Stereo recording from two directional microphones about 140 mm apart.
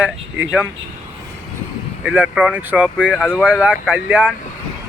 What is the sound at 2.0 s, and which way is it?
Speech, 10° right (ahead or behind).